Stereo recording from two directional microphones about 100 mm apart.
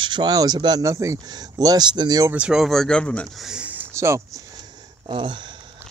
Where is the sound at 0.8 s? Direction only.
30° right (ahead or behind).